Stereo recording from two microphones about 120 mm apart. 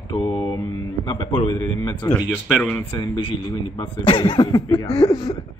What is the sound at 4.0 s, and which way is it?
Speech, 45° left (ahead or behind).